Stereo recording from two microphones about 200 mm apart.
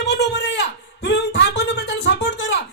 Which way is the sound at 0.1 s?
60° left (ahead or behind).